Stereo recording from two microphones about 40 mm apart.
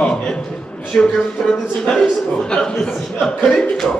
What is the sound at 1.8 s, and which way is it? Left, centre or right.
A man's voice, centre.